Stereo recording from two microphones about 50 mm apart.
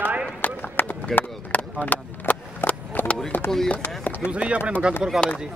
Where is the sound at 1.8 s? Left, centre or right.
Left.